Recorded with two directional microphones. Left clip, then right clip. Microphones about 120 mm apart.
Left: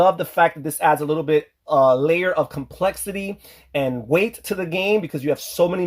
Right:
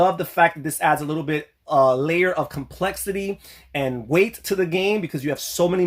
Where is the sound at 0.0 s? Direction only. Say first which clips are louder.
Left 1 dB; 35° left (ahead or behind).